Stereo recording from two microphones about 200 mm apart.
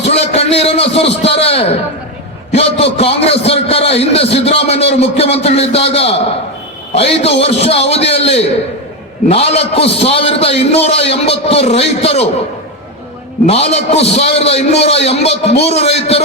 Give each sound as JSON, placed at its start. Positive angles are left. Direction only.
{"t": 0.0, "sound": "a sound", "side_deg": 30}
{"t": 2.5, "sound": "a man's voice", "side_deg": 30}
{"t": 13.5, "sound": "a man's voice", "side_deg": 30}